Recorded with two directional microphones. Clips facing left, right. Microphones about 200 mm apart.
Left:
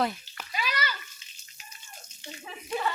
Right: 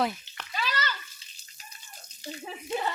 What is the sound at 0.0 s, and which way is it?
Frying, centre (ahead or behind).